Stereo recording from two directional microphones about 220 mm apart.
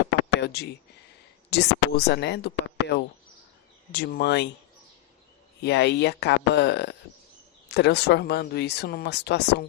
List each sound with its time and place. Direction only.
0.0 s a sound: 50° left (ahead or behind)
1.5 s speech: 50° left (ahead or behind)
5.6 s speech: 50° left (ahead or behind)